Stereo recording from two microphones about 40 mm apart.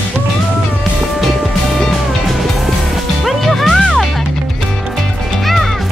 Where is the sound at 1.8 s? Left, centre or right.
Centre.